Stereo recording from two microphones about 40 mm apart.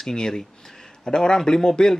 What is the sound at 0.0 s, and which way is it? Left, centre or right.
Speech, centre.